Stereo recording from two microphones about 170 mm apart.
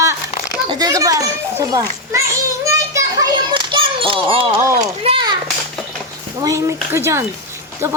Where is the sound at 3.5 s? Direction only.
30° right (ahead or behind).